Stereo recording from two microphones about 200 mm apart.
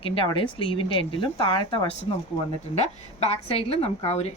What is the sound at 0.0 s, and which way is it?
A woman's voice, 25° left (ahead or behind).